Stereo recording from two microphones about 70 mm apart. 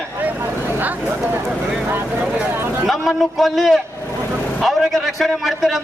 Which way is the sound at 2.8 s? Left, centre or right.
Centre.